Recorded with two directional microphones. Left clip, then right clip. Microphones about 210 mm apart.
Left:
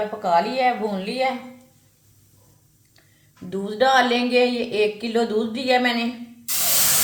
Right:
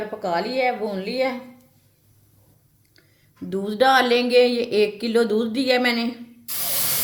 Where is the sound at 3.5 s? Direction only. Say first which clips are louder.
Right 1 dB; 50° right (ahead or behind).